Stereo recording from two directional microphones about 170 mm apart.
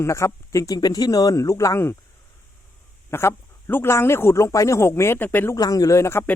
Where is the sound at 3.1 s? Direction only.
15° left (ahead or behind).